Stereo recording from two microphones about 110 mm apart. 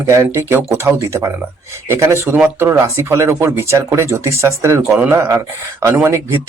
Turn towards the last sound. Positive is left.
turn(degrees=-25)  # may be behind; listen again after turning